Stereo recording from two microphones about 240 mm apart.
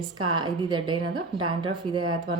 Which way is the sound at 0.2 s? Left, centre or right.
Centre.